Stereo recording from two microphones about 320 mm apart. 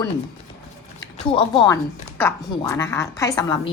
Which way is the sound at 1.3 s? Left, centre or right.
Centre.